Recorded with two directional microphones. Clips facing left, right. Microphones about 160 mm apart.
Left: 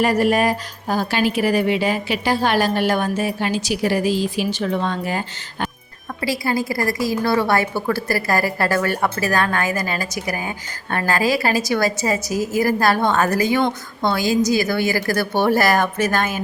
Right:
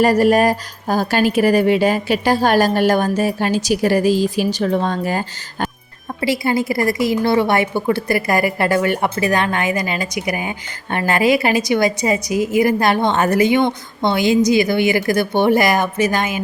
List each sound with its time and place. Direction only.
0.0 s a woman's voice: 40° right (ahead or behind)
6.2 s a woman's voice: 25° right (ahead or behind)